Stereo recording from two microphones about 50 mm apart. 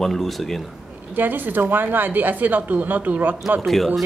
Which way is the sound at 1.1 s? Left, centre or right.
Right.